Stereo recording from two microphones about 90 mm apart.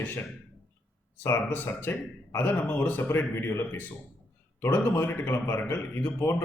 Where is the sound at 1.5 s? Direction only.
20° left (ahead or behind).